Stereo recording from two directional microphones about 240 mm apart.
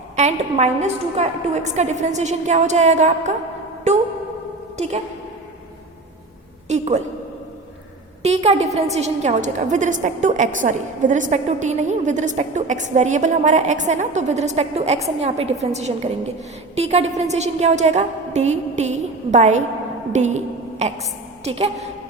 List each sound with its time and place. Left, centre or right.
0.2 s a woman's voice: right
3.9 s a sound: right
6.7 s a woman's voice: right
8.2 s a woman's voice: right